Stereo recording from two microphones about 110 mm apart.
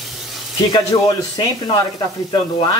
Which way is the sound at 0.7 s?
40° left (ahead or behind).